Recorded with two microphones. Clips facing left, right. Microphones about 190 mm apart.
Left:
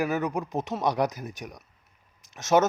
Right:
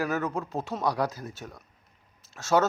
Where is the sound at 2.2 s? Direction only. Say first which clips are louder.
Left 2 dB; 20° left (ahead or behind).